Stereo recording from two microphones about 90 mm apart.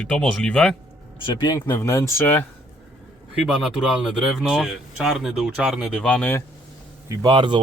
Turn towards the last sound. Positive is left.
turn(degrees=-65)  # may be behind; listen again after turning